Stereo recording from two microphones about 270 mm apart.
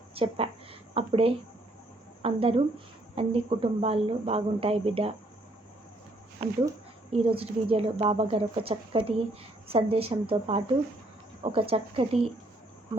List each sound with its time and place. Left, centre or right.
0.1 s a sound: right
2.2 s speech: right
6.4 s speech: right